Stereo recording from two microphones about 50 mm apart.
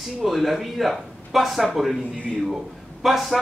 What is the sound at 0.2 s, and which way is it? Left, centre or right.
Speech, centre.